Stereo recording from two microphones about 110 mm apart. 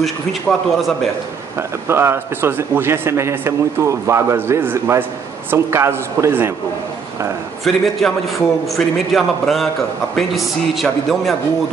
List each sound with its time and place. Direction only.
0.0 s a man's voice: centre (ahead or behind)
1.9 s a man's voice: 25° right (ahead or behind)
7.6 s a man's voice: centre (ahead or behind)